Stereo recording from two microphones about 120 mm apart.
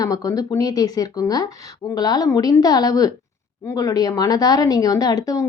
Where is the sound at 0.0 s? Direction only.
30° left (ahead or behind).